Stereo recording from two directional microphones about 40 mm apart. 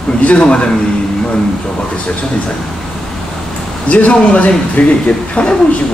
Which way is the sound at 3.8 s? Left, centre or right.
Left.